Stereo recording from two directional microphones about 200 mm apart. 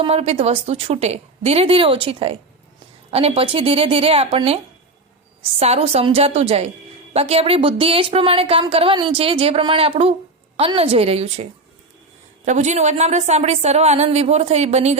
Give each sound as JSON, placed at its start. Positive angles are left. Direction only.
{"t": 0.0, "sound": "a woman's voice", "side_deg": -30}
{"t": 12.5, "sound": "a woman's voice", "side_deg": -35}